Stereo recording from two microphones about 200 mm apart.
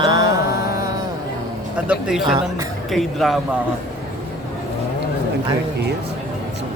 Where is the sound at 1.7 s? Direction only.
5° right (ahead or behind).